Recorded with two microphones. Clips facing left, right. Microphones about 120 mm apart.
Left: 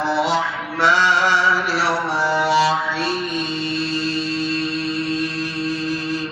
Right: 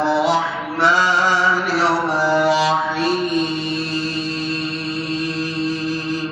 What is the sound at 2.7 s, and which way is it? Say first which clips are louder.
Mantra: right 3 dB; 45° right (ahead or behind).